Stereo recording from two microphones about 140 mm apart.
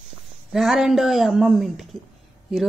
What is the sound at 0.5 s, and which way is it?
Speech, centre (ahead or behind).